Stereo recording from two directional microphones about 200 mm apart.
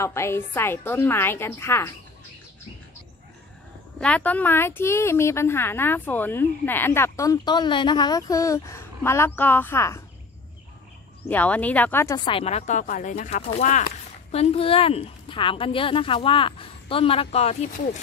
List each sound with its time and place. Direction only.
0.0 s a woman's voice: 15° left (ahead or behind)
4.0 s a woman's voice: 5° left (ahead or behind)
11.2 s a woman's voice: 10° left (ahead or behind)
12.3 s speech: 30° left (ahead or behind)